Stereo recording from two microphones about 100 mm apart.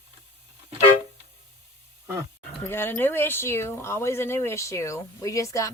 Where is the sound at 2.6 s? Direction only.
25° left (ahead or behind).